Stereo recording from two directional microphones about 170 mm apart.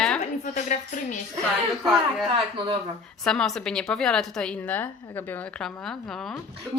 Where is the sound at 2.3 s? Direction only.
30° right (ahead or behind).